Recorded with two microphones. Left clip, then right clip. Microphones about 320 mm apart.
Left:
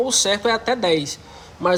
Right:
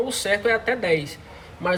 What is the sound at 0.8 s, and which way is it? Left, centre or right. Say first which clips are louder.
Speech: left 3 dB; left.